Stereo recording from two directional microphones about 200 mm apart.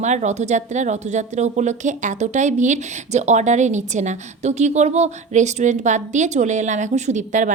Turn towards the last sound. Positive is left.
turn(degrees=-40)  # may be behind; listen again after turning